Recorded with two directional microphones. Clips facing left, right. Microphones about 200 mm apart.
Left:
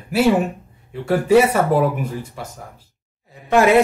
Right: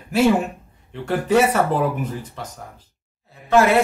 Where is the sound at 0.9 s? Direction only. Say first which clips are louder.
Left 4 dB; 10° left (ahead or behind).